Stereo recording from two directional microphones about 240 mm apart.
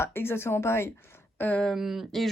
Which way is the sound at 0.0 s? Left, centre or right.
Centre.